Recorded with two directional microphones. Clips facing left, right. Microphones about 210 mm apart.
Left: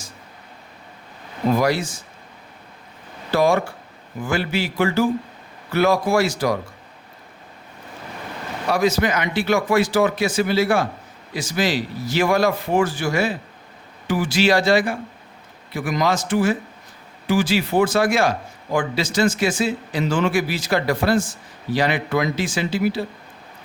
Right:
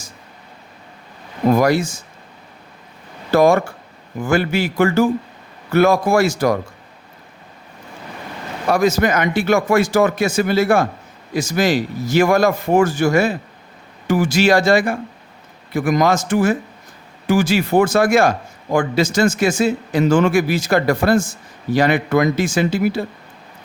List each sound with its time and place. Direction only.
1.5 s a man's voice: 45° right (ahead or behind)
3.3 s a man's voice: 45° right (ahead or behind)
8.7 s a man's voice: 45° right (ahead or behind)